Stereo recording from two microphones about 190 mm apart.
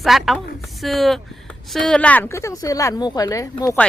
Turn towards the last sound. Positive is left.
turn(degrees=15)  # may be behind; listen again after turning